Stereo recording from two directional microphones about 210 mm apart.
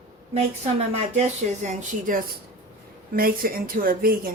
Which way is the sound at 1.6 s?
40° right (ahead or behind).